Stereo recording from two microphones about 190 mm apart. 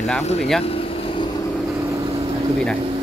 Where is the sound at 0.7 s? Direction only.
30° left (ahead or behind).